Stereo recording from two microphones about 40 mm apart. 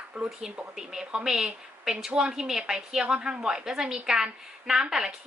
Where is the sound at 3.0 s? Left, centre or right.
Right.